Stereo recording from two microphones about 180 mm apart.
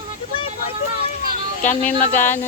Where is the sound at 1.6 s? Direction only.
45° left (ahead or behind).